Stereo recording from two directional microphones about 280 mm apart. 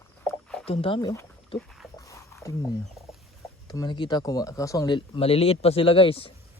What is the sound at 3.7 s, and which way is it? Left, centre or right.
Speech, centre.